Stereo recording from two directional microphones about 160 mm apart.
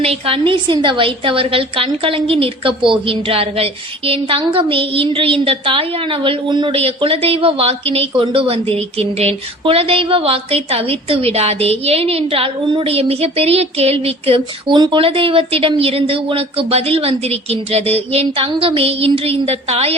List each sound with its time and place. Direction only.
0.0 s a woman's voice: 35° right (ahead or behind)